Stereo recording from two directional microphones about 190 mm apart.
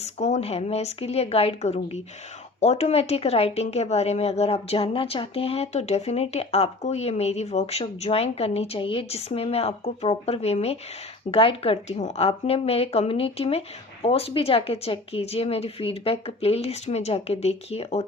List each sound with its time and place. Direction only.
0.0 s speech: 35° left (ahead or behind)